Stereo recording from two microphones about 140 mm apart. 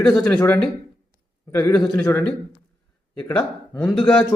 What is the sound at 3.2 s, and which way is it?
Speech, 10° left (ahead or behind).